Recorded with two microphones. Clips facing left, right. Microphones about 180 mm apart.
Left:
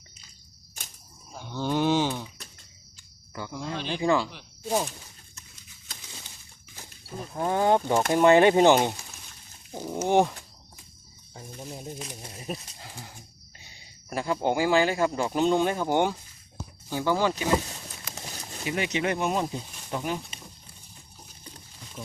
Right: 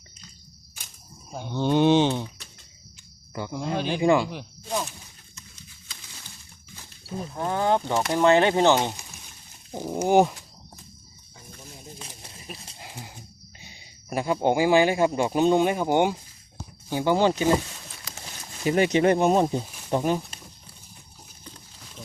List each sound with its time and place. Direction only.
1.4 s speech: 20° right (ahead or behind)
3.3 s speech: 20° right (ahead or behind)
7.4 s speech: 15° left (ahead or behind)
9.7 s speech: 15° right (ahead or behind)
11.9 s a sound: 35° left (ahead or behind)
12.8 s dog: 15° right (ahead or behind)
13.6 s speech: 20° right (ahead or behind)
18.6 s speech: 40° right (ahead or behind)